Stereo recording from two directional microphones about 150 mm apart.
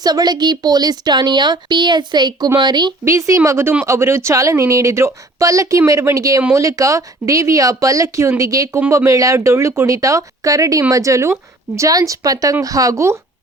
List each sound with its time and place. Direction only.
0.0 s speech: 25° right (ahead or behind)